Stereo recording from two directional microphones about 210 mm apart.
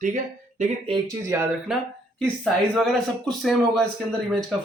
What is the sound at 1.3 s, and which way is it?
Speech, 10° right (ahead or behind).